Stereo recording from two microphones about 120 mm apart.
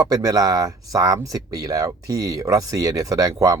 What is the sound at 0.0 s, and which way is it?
Speech, 30° right (ahead or behind).